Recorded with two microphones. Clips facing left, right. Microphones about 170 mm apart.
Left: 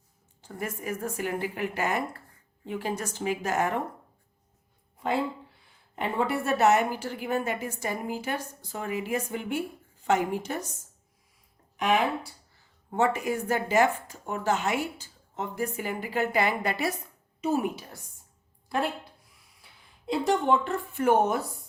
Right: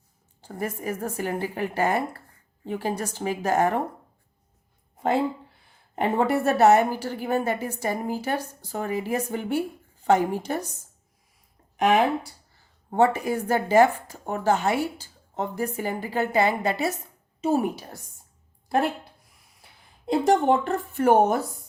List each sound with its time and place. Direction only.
0.4 s a woman's voice: 35° right (ahead or behind)
6.0 s a woman's voice: 45° right (ahead or behind)
12.9 s a woman's voice: 35° right (ahead or behind)
20.1 s speech: 45° right (ahead or behind)